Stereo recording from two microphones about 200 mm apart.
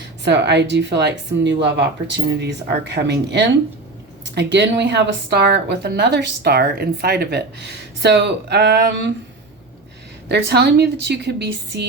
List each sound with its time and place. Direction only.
0.3 s a woman's voice: 60° right (ahead or behind)
10.2 s a woman's voice: 55° right (ahead or behind)